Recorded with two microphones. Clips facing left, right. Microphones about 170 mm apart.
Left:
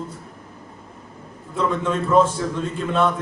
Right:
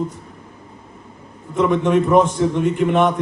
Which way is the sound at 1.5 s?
15° right (ahead or behind).